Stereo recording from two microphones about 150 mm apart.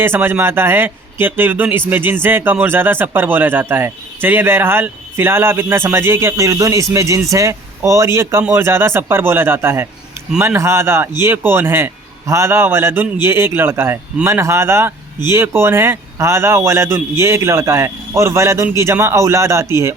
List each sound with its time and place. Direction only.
0.0 s a man's voice: 15° right (ahead or behind)